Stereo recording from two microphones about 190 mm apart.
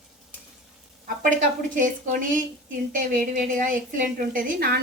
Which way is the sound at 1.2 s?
45° right (ahead or behind).